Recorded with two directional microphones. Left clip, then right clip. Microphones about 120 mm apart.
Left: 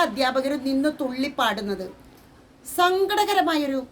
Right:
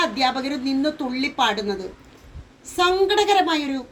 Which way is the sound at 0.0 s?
45° left (ahead or behind).